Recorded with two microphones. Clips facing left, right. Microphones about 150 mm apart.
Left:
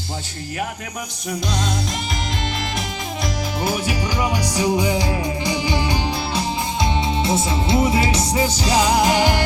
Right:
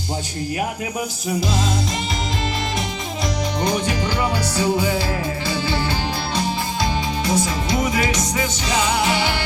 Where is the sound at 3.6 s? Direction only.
10° left (ahead or behind).